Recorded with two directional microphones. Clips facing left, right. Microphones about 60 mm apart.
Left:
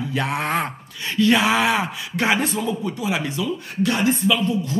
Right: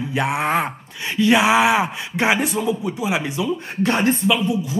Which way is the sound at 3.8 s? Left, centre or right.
Right.